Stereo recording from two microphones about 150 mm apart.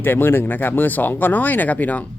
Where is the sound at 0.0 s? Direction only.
15° left (ahead or behind).